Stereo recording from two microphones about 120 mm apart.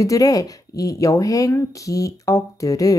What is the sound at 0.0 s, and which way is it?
Speech, 30° left (ahead or behind).